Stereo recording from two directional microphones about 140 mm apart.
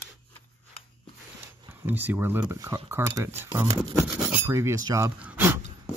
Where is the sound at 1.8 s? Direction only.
15° right (ahead or behind).